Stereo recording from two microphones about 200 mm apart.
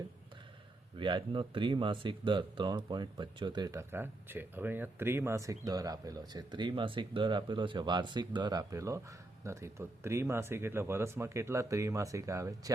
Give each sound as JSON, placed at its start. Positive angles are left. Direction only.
{"t": 0.9, "sound": "speech", "side_deg": -25}